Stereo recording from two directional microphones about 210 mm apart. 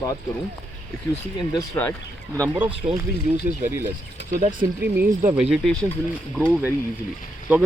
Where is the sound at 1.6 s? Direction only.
10° left (ahead or behind).